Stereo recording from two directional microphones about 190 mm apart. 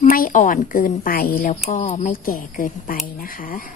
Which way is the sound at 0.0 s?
45° left (ahead or behind).